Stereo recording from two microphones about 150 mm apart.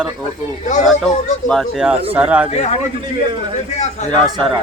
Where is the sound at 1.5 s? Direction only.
Centre (ahead or behind).